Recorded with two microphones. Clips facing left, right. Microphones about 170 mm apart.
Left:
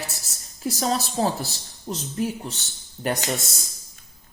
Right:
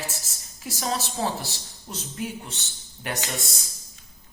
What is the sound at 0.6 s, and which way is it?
Speech, 40° left (ahead or behind).